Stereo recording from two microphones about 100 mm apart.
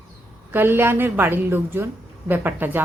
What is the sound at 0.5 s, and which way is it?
Speech, 20° right (ahead or behind).